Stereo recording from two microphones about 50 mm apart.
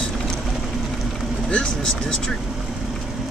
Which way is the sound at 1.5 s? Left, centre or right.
Centre.